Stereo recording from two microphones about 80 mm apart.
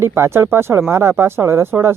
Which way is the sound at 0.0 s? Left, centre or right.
Right.